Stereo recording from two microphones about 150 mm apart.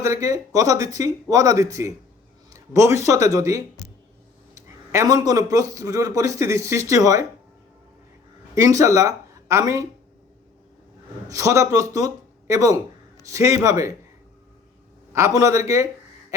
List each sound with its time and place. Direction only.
0.0 s a man's voice: 20° right (ahead or behind)
8.5 s speech: 20° right (ahead or behind)
11.3 s a man's voice: 20° right (ahead or behind)
15.4 s a man's voice: 20° right (ahead or behind)